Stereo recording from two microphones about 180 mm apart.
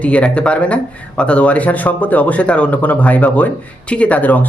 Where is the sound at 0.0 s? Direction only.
5° left (ahead or behind).